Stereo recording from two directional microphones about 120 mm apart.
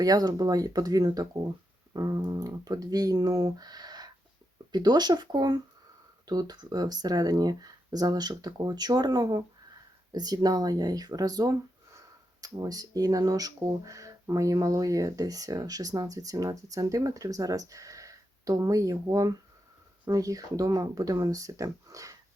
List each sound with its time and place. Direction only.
0.0 s speech: 30° right (ahead or behind)